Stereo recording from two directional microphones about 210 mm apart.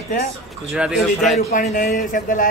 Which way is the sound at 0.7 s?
5° right (ahead or behind).